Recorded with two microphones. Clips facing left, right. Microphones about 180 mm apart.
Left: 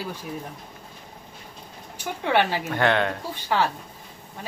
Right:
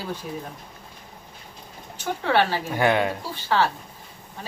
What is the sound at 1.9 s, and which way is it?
Speech, 15° left (ahead or behind).